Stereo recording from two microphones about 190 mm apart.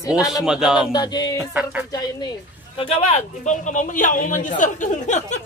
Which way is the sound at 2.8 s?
30° left (ahead or behind).